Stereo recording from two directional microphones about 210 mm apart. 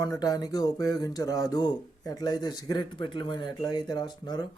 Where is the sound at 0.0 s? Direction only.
20° left (ahead or behind).